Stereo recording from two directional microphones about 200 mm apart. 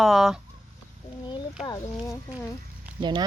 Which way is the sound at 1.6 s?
20° left (ahead or behind).